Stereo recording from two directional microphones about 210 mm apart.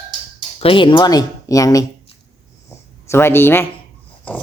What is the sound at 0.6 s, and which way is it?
Speech, 25° left (ahead or behind).